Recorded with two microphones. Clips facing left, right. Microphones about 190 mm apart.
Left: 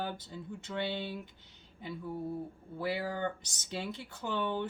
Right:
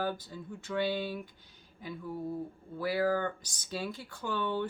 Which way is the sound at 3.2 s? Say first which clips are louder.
Even; 20° left (ahead or behind).